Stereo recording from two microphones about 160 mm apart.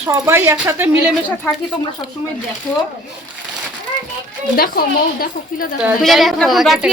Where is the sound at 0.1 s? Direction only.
20° right (ahead or behind).